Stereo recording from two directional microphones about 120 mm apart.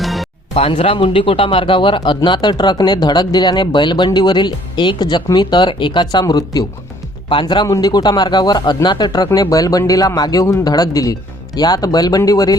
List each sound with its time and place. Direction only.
0.0 s music: centre (ahead or behind)
0.5 s a man's voice: 55° left (ahead or behind); by 12.5 s 30° left (ahead or behind)